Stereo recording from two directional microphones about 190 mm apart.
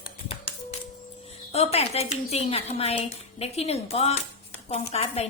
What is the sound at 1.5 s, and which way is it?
A woman's voice, 35° left (ahead or behind).